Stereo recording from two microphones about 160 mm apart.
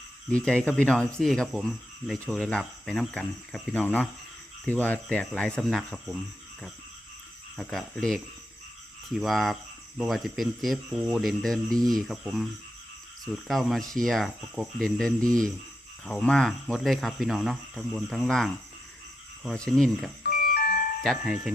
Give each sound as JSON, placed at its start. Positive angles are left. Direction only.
{"t": 0.3, "sound": "speech", "side_deg": 5}
{"t": 4.6, "sound": "cricket", "side_deg": 10}
{"t": 7.5, "sound": "speech", "side_deg": 5}
{"t": 20.2, "sound": "music", "side_deg": 80}
{"t": 21.0, "sound": "speech", "side_deg": 0}